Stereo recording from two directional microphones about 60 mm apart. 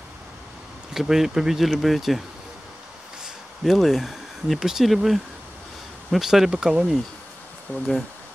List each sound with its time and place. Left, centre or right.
0.9 s speech: centre
3.6 s speech: centre
7.7 s speech: left